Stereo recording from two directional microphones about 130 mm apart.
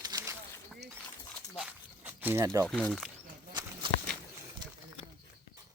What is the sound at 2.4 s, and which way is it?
Speech, 25° right (ahead or behind).